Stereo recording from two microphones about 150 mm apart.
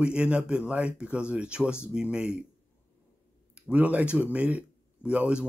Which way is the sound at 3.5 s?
10° right (ahead or behind).